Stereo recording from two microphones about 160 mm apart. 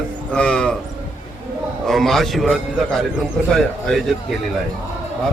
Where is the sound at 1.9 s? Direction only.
Centre (ahead or behind).